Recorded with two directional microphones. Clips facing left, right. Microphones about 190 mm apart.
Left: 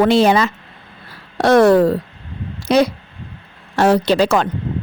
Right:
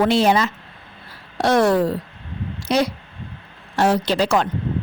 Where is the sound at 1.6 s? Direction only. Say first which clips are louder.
Left 6 dB; 80° left.